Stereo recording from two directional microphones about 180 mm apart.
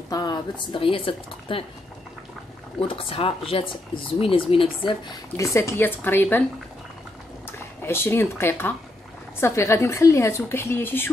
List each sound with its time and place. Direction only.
0.1 s speech: 25° left (ahead or behind)
2.8 s speech: 30° left (ahead or behind); by 6.4 s 10° left (ahead or behind)
7.5 s speech: 15° left (ahead or behind)